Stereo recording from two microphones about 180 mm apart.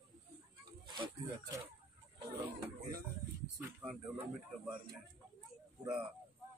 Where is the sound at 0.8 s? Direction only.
25° right (ahead or behind).